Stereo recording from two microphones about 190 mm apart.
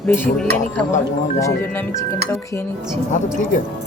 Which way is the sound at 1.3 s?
15° left (ahead or behind).